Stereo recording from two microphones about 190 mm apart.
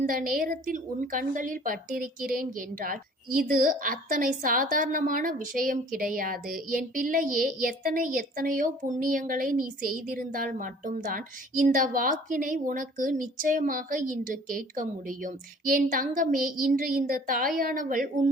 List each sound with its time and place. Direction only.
0.0 s a woman's voice: 45° right (ahead or behind)